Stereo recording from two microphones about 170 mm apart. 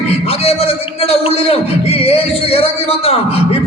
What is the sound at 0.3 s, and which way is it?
A man's voice, 35° left (ahead or behind).